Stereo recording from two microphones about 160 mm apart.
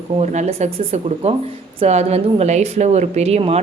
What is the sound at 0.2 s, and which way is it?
A woman's voice, 45° right (ahead or behind).